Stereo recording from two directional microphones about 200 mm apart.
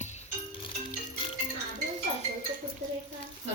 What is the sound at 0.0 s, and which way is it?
Music, 35° left (ahead or behind).